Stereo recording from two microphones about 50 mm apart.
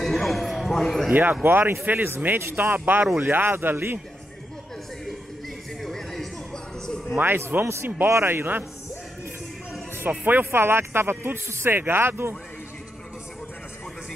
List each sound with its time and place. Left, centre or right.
0.0 s a sound: centre
1.0 s speech: right
1.4 s speech: right
2.1 s speech: right
5.8 s a sound: centre
7.2 s speech: right
7.6 s a man's voice: right
8.3 s speech: right
10.0 s speech: right
10.4 s speech: right